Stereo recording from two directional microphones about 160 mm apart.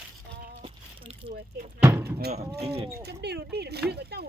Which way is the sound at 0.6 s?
35° right (ahead or behind).